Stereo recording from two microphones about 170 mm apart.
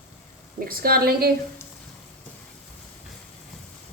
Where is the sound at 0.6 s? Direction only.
60° right (ahead or behind).